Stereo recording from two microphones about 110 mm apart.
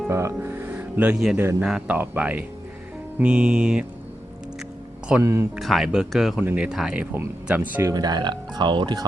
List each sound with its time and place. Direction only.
0.1 s speech: 25° right (ahead or behind); by 1.4 s 5° right (ahead or behind)
1.4 s speech: 20° right (ahead or behind)
1.6 s speech: 5° right (ahead or behind)
5.2 s speech: 25° right (ahead or behind)
5.5 s speech: centre (ahead or behind)
6.4 s speech: 20° right (ahead or behind)
6.7 s speech: 5° right (ahead or behind)
7.8 s speech: 35° right (ahead or behind)